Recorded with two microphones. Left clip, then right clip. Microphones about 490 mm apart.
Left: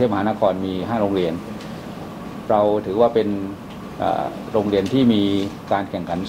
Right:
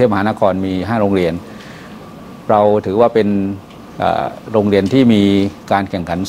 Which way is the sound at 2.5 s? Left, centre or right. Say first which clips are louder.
Right 6 dB; right.